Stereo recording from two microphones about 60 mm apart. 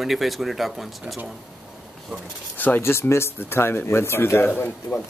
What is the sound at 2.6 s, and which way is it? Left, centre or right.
Speech, left.